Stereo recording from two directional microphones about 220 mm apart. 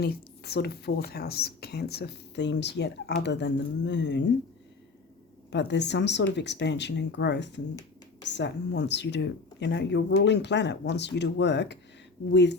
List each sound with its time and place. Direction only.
0.0 s a woman's voice: 45° left (ahead or behind)
5.5 s speech: 50° left (ahead or behind)